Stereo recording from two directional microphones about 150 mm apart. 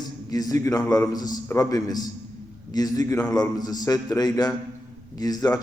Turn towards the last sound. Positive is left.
turn(degrees=25)  # may be behind; listen again after turning